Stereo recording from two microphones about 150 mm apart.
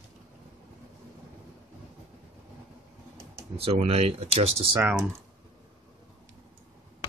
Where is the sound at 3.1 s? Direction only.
40° right (ahead or behind).